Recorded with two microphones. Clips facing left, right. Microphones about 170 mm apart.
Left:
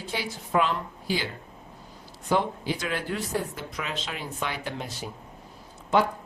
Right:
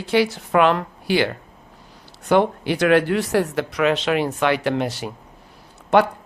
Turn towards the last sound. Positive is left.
turn(degrees=-65)  # may be behind; listen again after turning